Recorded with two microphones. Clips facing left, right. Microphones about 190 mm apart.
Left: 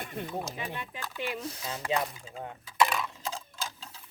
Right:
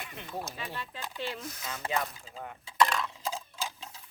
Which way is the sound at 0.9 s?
15° right (ahead or behind).